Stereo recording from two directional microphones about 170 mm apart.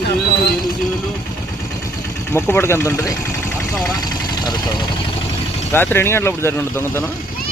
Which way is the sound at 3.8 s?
20° left (ahead or behind).